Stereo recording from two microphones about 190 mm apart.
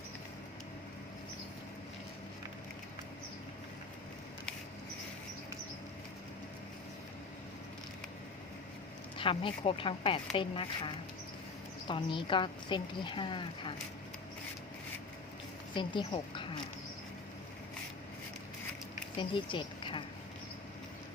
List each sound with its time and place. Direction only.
9.1 s a woman's voice: 25° left (ahead or behind)
15.7 s a woman's voice: 25° left (ahead or behind)
19.2 s speech: 25° left (ahead or behind)